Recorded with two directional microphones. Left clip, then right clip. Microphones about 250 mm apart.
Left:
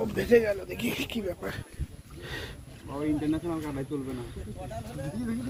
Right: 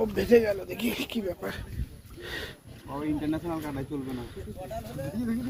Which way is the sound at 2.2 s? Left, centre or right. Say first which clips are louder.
Right 2 dB; right.